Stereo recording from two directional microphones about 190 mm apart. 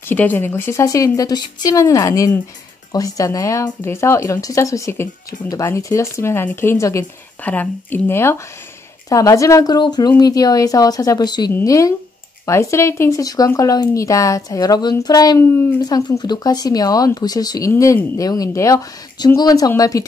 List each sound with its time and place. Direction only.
0.0 s speech: 10° left (ahead or behind)